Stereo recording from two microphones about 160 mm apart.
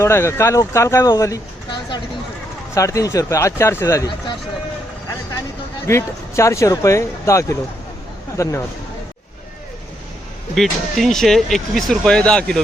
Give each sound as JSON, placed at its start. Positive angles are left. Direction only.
{"t": 0.0, "sound": "speech", "side_deg": 15}
{"t": 5.9, "sound": "speech", "side_deg": 15}
{"t": 10.5, "sound": "speech", "side_deg": 0}